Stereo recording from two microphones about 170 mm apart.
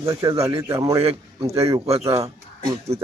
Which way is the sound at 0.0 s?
20° right (ahead or behind).